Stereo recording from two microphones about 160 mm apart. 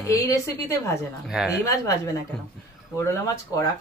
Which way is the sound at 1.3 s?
Centre (ahead or behind).